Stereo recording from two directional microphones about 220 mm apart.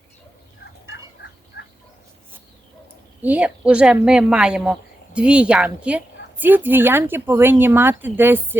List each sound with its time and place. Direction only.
0.6 s turkey: 55° left (ahead or behind)
3.2 s a woman's voice: 5° right (ahead or behind)